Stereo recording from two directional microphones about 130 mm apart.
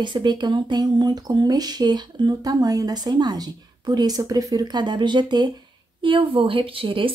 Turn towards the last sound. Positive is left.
turn(degrees=-40)  # may be behind; listen again after turning